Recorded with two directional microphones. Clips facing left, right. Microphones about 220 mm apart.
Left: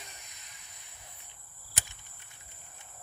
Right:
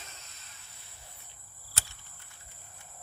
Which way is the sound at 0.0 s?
15° left (ahead or behind).